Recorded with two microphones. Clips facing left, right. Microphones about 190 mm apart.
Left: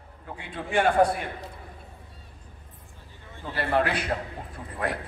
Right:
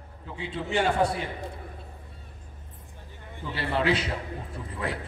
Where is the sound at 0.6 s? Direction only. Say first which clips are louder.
Left 2 dB; 25° right (ahead or behind).